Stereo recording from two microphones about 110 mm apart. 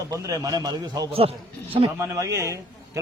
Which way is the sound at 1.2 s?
60° right (ahead or behind).